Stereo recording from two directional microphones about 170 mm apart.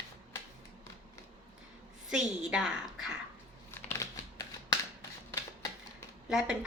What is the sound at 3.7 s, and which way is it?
Crumpling, 20° left (ahead or behind).